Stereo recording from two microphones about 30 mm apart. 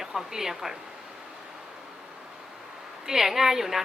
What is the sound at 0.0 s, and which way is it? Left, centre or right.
Speech, centre.